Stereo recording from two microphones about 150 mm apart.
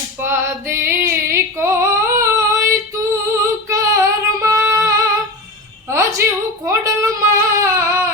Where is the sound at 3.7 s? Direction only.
20° right (ahead or behind).